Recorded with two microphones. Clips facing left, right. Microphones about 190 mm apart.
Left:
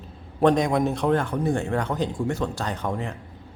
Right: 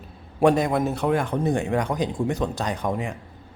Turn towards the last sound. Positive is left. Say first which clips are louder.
# right 2 dB
turn(degrees=-15)  # may be behind; listen again after turning